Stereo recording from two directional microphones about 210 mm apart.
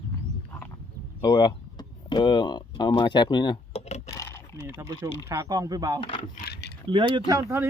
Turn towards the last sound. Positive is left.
turn(degrees=-15)  # may be behind; listen again after turning